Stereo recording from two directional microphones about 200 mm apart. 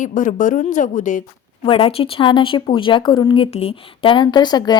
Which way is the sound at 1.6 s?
25° left (ahead or behind).